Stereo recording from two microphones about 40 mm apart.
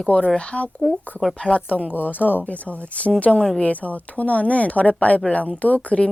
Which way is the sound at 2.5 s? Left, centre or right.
Left.